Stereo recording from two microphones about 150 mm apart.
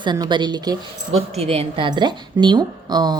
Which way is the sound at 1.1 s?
40° right (ahead or behind).